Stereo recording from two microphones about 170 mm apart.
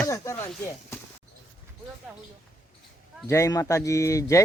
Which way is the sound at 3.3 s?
20° left (ahead or behind).